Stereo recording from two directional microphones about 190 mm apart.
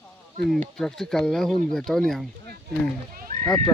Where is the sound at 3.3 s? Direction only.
40° right (ahead or behind).